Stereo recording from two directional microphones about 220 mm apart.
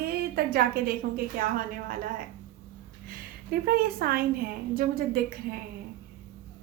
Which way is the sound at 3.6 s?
45° right (ahead or behind).